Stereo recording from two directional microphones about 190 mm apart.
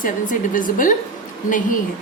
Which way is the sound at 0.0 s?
45° left (ahead or behind).